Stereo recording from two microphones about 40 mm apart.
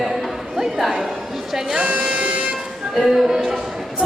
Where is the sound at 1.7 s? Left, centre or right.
Right.